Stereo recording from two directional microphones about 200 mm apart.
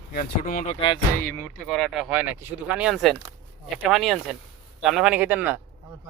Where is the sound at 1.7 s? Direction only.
Centre (ahead or behind).